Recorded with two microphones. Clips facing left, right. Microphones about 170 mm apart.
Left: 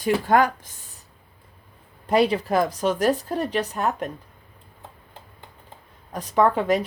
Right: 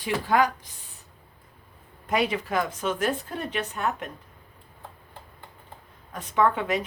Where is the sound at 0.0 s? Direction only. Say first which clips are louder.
Left 4 dB; 50° left (ahead or behind).